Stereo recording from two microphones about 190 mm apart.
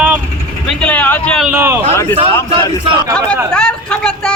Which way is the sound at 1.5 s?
15° right (ahead or behind).